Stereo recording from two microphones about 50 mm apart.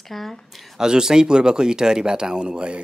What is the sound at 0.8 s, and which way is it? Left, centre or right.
Speech, centre.